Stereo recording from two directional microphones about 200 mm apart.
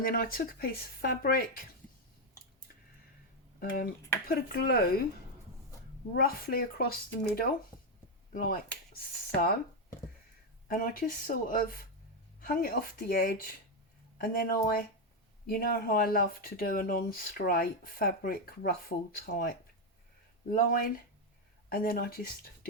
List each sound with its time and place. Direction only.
0.0 s speech: 45° left (ahead or behind)
3.6 s speech: 45° left (ahead or behind)
6.1 s speech: 45° left (ahead or behind)
10.7 s speech: 45° left (ahead or behind)